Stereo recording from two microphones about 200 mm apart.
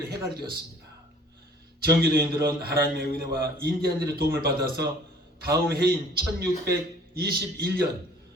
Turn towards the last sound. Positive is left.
turn(degrees=-50)  # may be behind; listen again after turning